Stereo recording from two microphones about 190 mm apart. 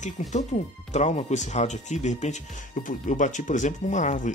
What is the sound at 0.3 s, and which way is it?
Speech, 40° left (ahead or behind).